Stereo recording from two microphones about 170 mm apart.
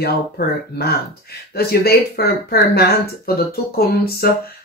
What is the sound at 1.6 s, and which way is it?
Speech, 65° left (ahead or behind).